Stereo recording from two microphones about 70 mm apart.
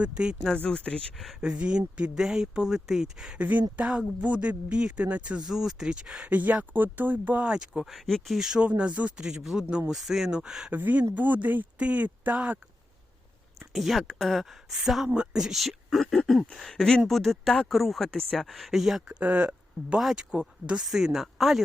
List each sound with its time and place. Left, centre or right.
0.0 s speech: centre
0.3 s speech: centre
1.4 s speech: centre
3.3 s speech: right
5.5 s speech: centre
6.2 s speech: right
7.4 s speech: centre
7.9 s speech: centre
8.7 s speech: centre
10.7 s speech: right
13.7 s speech: centre
19.2 s speech: right
20.0 s speech: centre